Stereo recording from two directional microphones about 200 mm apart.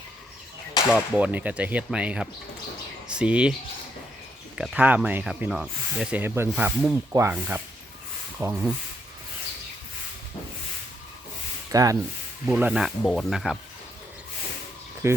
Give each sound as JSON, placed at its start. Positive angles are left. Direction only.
{"t": 0.9, "sound": "speech", "side_deg": -5}
{"t": 4.5, "sound": "speech", "side_deg": -5}
{"t": 11.7, "sound": "speech", "side_deg": -15}
{"t": 15.0, "sound": "speech", "side_deg": -15}